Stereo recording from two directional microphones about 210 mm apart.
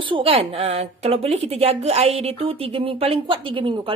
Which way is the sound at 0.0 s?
25° right (ahead or behind).